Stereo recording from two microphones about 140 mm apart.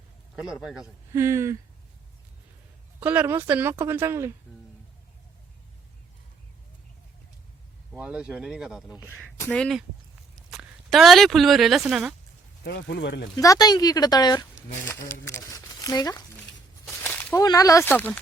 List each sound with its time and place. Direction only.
0.3 s a man's voice: 5° right (ahead or behind)
1.1 s speech: 20° right (ahead or behind)
3.0 s a woman's voice: 10° right (ahead or behind)
7.9 s a woman's voice: 5° right (ahead or behind)
9.0 s speech: 15° left (ahead or behind); by 12.1 s 5° right (ahead or behind)
13.3 s speech: 25° left (ahead or behind)
14.8 s speech: 15° left (ahead or behind)
17.3 s speech: 25° left (ahead or behind)